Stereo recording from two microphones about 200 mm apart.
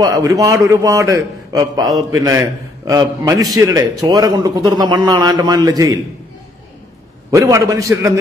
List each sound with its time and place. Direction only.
0.0 s a man's voice: 20° right (ahead or behind)
7.2 s a man's voice: 15° right (ahead or behind)